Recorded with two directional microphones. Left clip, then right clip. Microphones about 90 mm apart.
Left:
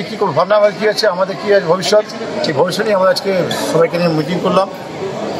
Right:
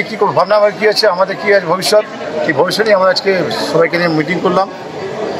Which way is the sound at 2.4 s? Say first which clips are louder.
Right 2 dB; 20° right (ahead or behind).